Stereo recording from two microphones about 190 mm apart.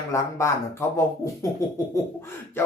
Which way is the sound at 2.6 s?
10° left (ahead or behind).